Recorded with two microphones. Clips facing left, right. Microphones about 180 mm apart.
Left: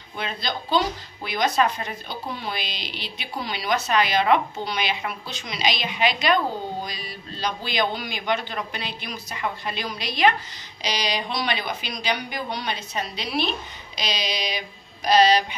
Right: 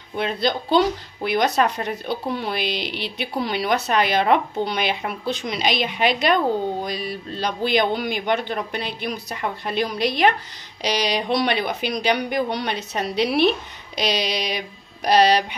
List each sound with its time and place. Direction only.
0.2 s speech: 60° right (ahead or behind)